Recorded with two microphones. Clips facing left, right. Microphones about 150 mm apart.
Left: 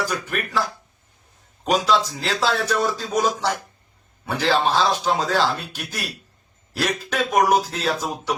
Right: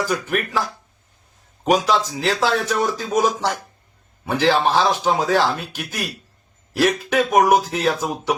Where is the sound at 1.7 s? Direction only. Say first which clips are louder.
Right 1 dB; 15° right (ahead or behind).